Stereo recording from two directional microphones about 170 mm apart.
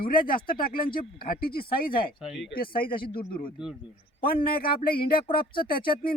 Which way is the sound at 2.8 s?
30° left (ahead or behind).